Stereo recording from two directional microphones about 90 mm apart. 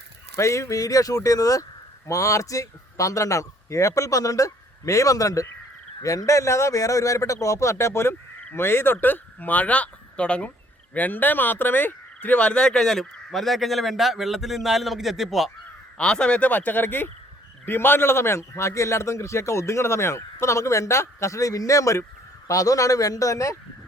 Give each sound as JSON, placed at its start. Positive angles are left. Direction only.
{"t": 0.3, "sound": "a man's voice", "side_deg": 35}
{"t": 10.9, "sound": "frog", "side_deg": 20}
{"t": 16.0, "sound": "a man's voice", "side_deg": 10}